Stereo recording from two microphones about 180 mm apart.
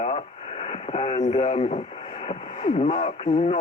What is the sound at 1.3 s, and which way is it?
Speech, 40° left (ahead or behind).